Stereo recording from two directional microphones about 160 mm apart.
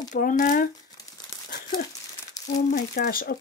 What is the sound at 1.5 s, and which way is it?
Crumpling, 75° left (ahead or behind).